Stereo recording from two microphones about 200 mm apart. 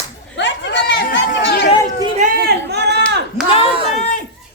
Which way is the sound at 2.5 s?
55° right (ahead or behind).